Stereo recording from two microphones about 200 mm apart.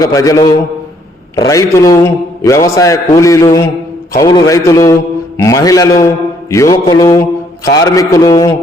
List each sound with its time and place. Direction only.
0.0 s a man's voice: 15° left (ahead or behind)